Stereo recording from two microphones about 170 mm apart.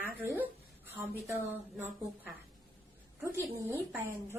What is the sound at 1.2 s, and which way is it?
Speech, 15° right (ahead or behind).